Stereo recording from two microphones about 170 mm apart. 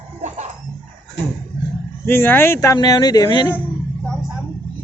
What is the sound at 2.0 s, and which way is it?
Speech, 10° left (ahead or behind).